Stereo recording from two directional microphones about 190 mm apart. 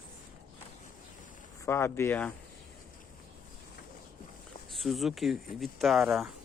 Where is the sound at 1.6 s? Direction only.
15° left (ahead or behind).